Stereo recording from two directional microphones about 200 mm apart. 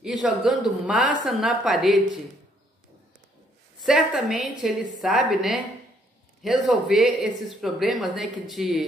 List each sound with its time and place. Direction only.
0.0 s speech: centre (ahead or behind)
3.8 s speech: 5° right (ahead or behind)